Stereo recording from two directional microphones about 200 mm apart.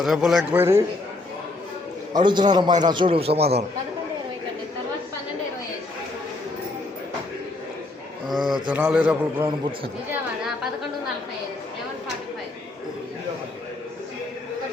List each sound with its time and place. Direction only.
0.0 s a man's voice: centre (ahead or behind)
2.1 s a man's voice: 20° right (ahead or behind)
8.3 s a man's voice: centre (ahead or behind)
10.1 s chatter: centre (ahead or behind)